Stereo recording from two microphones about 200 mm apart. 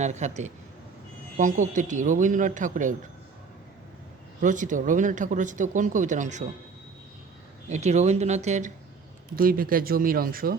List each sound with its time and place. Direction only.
0.0 s speech: 35° right (ahead or behind)
4.4 s speech: 40° right (ahead or behind)
7.7 s speech: 35° right (ahead or behind)